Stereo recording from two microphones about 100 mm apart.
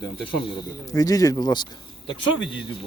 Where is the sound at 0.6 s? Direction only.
35° left (ahead or behind).